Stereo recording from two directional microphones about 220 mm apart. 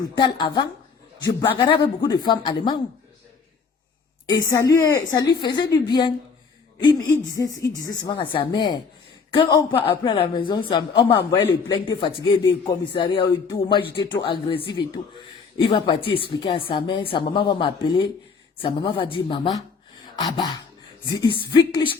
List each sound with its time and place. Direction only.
0.0 s speech: 20° left (ahead or behind)
4.3 s a woman's voice: 15° left (ahead or behind)